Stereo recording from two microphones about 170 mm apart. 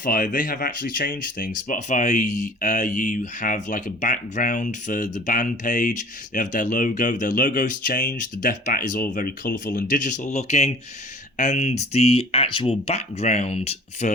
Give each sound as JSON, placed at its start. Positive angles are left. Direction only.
{"t": 0.0, "sound": "speech", "side_deg": 55}